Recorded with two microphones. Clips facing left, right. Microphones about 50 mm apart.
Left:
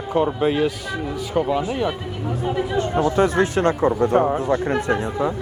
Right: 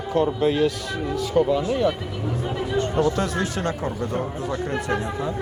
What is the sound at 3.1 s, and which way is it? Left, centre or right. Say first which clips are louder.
Speech: left 6 dB; left.